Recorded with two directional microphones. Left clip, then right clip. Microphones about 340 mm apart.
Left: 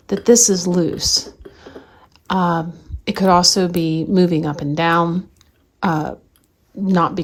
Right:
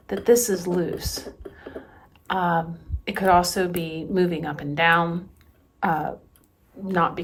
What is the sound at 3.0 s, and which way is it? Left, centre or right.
Speech, centre.